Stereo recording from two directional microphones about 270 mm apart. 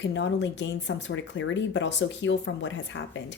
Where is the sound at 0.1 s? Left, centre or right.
Left.